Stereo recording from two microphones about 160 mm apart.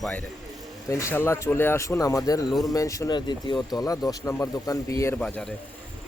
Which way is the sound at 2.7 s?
20° left (ahead or behind).